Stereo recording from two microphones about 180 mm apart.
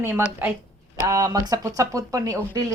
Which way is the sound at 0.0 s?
10° right (ahead or behind).